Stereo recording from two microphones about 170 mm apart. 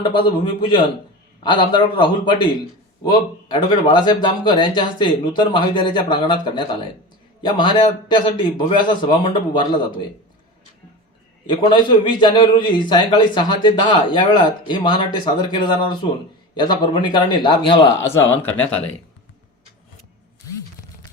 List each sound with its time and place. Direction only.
0.0 s a man's voice: 30° left (ahead or behind)
11.4 s a man's voice: 25° left (ahead or behind)
18.4 s speech: 10° left (ahead or behind)